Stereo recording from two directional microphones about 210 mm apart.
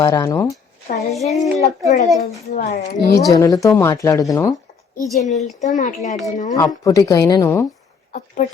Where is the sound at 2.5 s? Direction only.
30° left (ahead or behind).